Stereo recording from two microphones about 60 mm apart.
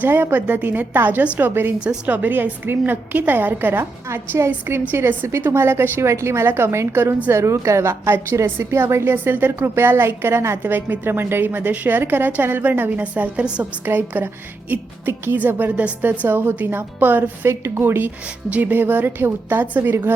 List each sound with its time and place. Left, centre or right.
0.0 s a woman's voice: right
4.1 s a woman's voice: right
5.5 s a woman's voice: right
9.1 s a woman's voice: right
10.6 s a woman's voice: right
13.8 s a woman's voice: right
17.4 s a woman's voice: right